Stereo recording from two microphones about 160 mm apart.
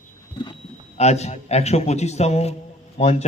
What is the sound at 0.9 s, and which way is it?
A man's voice, 40° left (ahead or behind).